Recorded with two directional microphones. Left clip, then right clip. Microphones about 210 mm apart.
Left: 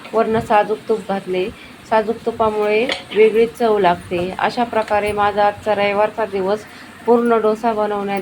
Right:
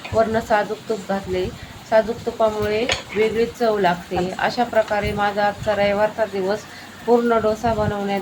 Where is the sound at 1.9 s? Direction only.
10° left (ahead or behind).